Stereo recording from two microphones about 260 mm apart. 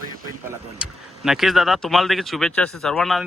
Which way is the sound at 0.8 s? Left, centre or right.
Centre.